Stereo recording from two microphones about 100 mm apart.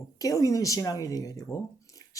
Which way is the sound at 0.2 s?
35° left (ahead or behind).